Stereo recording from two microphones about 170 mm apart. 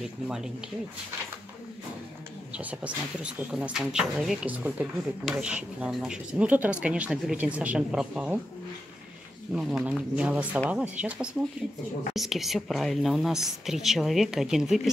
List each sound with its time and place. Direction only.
2.5 s speech: 5° right (ahead or behind)
9.5 s a woman's voice: 5° right (ahead or behind)